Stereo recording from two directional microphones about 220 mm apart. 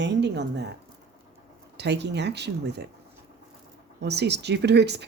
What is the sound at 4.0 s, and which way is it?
Speech, 50° right (ahead or behind).